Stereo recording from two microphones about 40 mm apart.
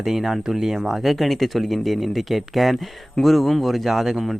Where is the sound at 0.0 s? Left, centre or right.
Centre.